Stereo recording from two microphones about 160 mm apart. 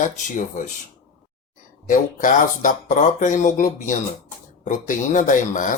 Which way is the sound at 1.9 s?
55° left (ahead or behind).